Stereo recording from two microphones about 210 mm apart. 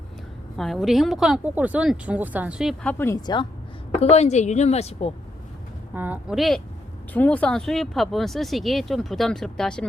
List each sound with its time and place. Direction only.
0.5 s speech: centre (ahead or behind)
3.0 s speech: 15° left (ahead or behind)
4.1 s a woman's voice: 30° left (ahead or behind)
5.9 s speech: 10° right (ahead or behind)